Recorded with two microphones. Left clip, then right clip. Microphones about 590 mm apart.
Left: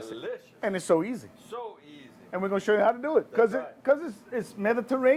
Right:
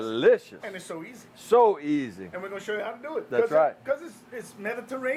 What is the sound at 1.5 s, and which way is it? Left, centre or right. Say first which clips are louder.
Speech: right 19 dB; right.